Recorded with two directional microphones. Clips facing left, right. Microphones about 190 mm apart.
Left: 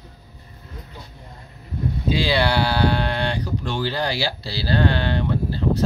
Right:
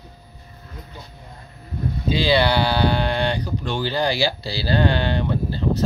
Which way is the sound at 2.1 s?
5° left (ahead or behind).